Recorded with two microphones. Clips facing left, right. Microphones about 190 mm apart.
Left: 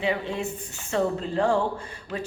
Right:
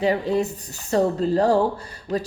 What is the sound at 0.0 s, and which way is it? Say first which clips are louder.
A woman's voice: right 6 dB; 40° right (ahead or behind).